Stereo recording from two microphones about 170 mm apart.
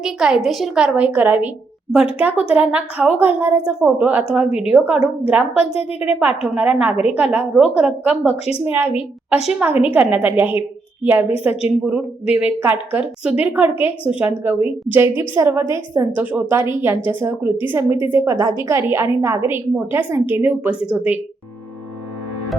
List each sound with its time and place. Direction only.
0.0 s a woman's voice: 5° right (ahead or behind)
4.4 s a woman's voice: 35° left (ahead or behind)
4.7 s a woman's voice: 10° right (ahead or behind)